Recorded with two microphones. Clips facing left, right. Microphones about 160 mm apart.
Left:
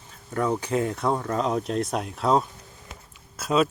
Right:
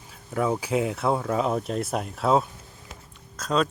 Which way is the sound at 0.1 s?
5° right (ahead or behind).